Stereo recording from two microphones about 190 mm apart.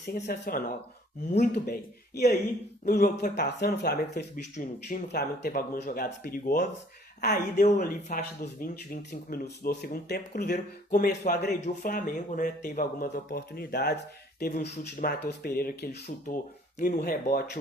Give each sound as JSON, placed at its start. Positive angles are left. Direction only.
{"t": 0.1, "sound": "speech", "side_deg": 55}
{"t": 4.5, "sound": "speech", "side_deg": 40}
{"t": 5.0, "sound": "speech", "side_deg": 55}
{"t": 9.3, "sound": "speech", "side_deg": 55}
{"t": 11.6, "sound": "speech", "side_deg": 45}
{"t": 16.8, "sound": "speech", "side_deg": 45}